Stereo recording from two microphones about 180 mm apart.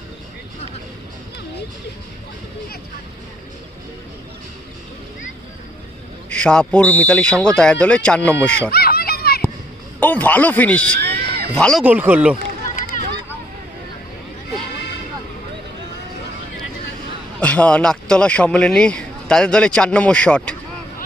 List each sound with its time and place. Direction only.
6.3 s speech: 5° left (ahead or behind)
8.7 s a sound: 60° left (ahead or behind)
10.0 s speech: 10° left (ahead or behind)
11.0 s crowd: 65° right (ahead or behind)
11.5 s speech: 5° left (ahead or behind)
11.8 s speech: 10° right (ahead or behind)
17.4 s speech: 5° left (ahead or behind)